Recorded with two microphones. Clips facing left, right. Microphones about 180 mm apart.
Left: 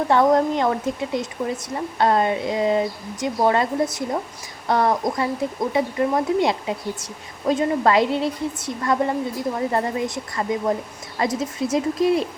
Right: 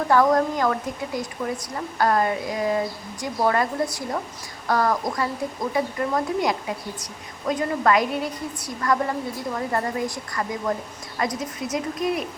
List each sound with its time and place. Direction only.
0.1 s speech: 25° left (ahead or behind)